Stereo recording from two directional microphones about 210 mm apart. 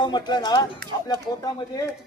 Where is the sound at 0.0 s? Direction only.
20° left (ahead or behind).